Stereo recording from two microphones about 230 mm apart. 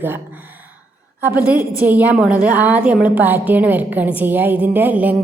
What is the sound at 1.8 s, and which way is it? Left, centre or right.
A woman's voice, centre.